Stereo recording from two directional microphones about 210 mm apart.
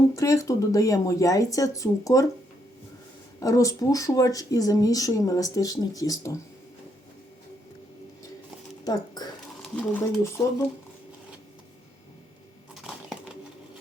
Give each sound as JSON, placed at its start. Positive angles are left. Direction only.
{"t": 0.2, "sound": "speech", "side_deg": 15}
{"t": 3.4, "sound": "speech", "side_deg": 15}
{"t": 8.8, "sound": "speech", "side_deg": 20}
{"t": 9.7, "sound": "speech", "side_deg": 5}
{"t": 12.8, "sound": "a sound", "side_deg": 0}